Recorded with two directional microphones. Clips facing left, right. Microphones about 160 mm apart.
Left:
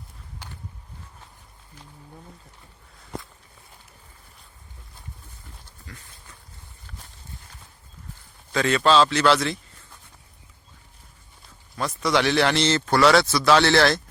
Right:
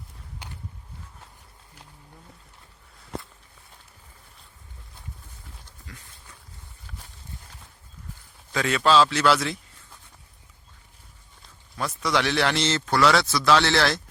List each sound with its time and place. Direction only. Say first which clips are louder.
8.5 s speech: left 1 dB; 5° right (ahead or behind)
11.8 s speech: left 3 dB; centre (ahead or behind)